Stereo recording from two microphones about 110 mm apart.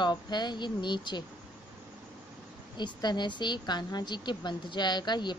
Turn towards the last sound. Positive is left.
turn(degrees=40)  # may be behind; listen again after turning